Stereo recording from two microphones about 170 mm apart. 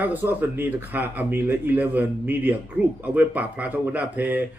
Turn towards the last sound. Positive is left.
turn(degrees=-10)  # may be behind; listen again after turning